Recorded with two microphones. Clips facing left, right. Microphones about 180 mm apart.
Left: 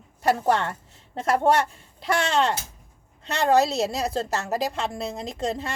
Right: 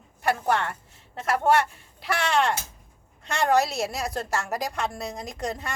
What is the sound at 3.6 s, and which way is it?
A woman's voice, 25° left (ahead or behind).